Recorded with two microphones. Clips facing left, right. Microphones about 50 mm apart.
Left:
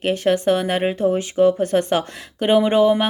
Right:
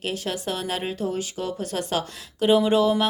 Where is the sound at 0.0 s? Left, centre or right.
Left.